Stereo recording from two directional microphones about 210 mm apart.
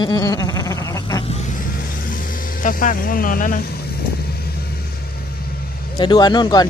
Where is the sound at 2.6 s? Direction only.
40° left (ahead or behind).